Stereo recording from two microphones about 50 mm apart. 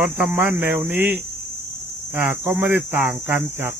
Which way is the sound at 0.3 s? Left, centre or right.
Right.